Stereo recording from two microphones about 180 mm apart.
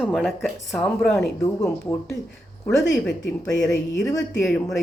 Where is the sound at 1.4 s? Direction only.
15° left (ahead or behind).